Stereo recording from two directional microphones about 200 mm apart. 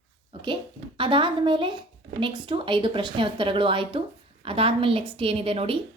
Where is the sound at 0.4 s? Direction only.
25° right (ahead or behind).